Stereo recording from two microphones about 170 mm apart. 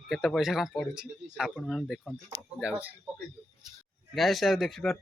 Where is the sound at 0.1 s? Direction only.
Centre (ahead or behind).